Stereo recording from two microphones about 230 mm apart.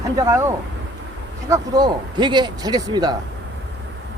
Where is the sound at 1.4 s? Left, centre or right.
Centre.